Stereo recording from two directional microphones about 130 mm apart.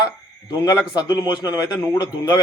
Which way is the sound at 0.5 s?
30° left (ahead or behind).